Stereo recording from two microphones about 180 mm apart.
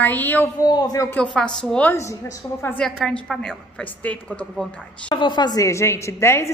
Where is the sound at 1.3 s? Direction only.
5° left (ahead or behind).